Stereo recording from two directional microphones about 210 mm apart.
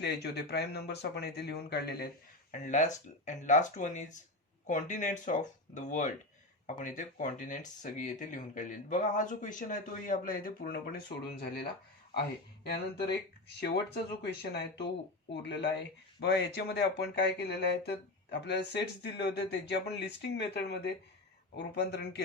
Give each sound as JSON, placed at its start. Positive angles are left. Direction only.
{"t": 0.0, "sound": "speech", "side_deg": 50}
{"t": 2.5, "sound": "speech", "side_deg": 35}